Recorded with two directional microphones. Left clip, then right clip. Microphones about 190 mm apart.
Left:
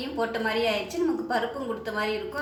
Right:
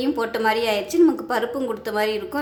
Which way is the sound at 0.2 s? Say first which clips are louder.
Right 2 dB; 55° right (ahead or behind).